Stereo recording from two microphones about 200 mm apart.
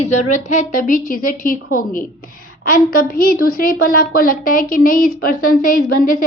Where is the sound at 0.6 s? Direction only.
40° left (ahead or behind).